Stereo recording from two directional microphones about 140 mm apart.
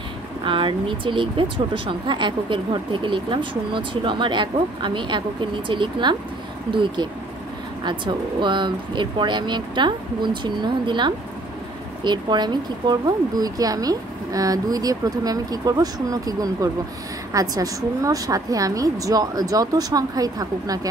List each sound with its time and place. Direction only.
0.5 s speech: 35° right (ahead or behind)